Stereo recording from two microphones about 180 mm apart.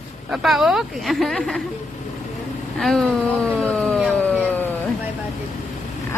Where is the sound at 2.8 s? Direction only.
Centre (ahead or behind).